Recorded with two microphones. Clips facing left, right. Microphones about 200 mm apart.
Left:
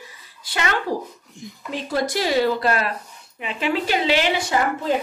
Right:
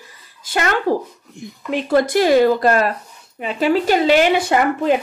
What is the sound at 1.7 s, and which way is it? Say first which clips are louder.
Speech: right 8 dB; 55° right (ahead or behind).